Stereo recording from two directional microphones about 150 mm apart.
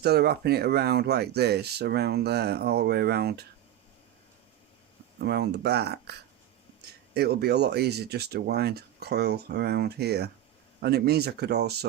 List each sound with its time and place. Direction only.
0.0 s speech: 90° right
5.2 s speech: 90° right